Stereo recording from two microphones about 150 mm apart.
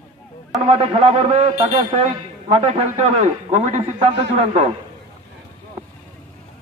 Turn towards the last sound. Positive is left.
turn(degrees=-40)  # may be behind; listen again after turning